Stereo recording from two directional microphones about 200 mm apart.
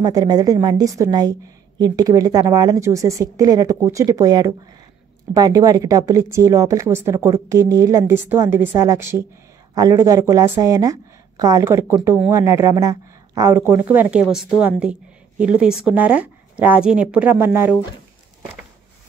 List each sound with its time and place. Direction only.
0.0 s a woman's voice: 20° right (ahead or behind)